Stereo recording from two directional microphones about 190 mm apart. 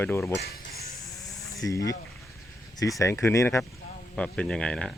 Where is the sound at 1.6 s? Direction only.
20° left (ahead or behind).